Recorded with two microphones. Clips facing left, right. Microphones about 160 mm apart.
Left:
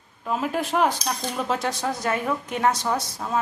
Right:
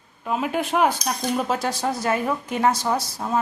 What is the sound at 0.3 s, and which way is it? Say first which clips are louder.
Speech: right 1 dB; centre (ahead or behind).